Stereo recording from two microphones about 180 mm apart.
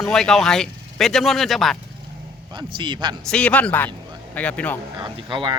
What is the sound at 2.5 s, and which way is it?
Speech, 25° right (ahead or behind).